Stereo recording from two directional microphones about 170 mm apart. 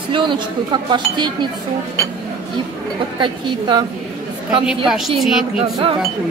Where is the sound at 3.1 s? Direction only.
30° right (ahead or behind).